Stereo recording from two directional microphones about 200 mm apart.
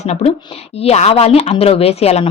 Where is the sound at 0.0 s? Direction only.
30° left (ahead or behind).